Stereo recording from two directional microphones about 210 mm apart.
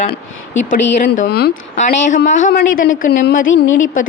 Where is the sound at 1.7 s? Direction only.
35° left (ahead or behind).